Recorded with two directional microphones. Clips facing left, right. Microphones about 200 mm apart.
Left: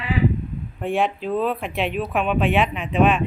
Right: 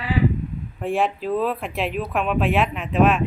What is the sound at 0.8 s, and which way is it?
Speech, centre (ahead or behind).